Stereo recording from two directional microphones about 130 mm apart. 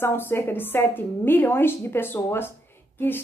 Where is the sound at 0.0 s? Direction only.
15° left (ahead or behind).